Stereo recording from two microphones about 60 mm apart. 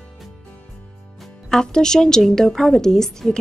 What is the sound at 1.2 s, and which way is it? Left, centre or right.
Speech, centre.